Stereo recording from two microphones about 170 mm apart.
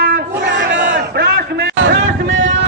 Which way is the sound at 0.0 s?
80° right.